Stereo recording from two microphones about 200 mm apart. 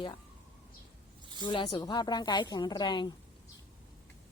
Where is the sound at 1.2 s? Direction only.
20° right (ahead or behind).